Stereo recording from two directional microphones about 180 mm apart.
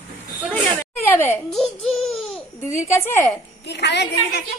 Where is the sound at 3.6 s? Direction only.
70° left (ahead or behind).